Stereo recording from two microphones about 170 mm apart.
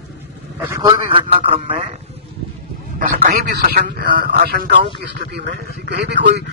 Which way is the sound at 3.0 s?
55° right (ahead or behind).